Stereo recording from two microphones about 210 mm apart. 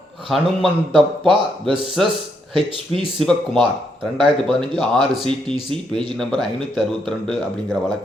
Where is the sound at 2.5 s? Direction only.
25° right (ahead or behind).